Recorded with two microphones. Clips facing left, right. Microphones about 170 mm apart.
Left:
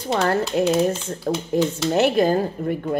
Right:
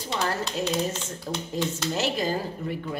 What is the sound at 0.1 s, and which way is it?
A woman's voice, 55° left (ahead or behind).